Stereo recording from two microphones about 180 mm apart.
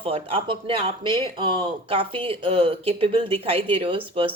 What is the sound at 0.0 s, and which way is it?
Speech, 30° right (ahead or behind).